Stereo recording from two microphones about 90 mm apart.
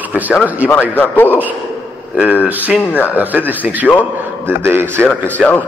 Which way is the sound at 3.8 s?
20° left (ahead or behind).